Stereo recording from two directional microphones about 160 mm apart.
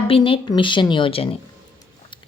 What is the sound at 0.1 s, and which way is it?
A woman's voice, 30° left (ahead or behind).